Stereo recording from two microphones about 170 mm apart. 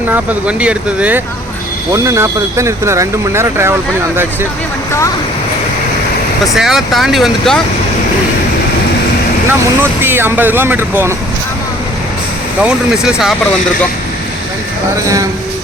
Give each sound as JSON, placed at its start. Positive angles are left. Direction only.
{"t": 0.1, "sound": "speech", "side_deg": -5}
{"t": 6.4, "sound": "speech", "side_deg": 0}
{"t": 9.5, "sound": "speech", "side_deg": -15}
{"t": 12.6, "sound": "speech", "side_deg": -5}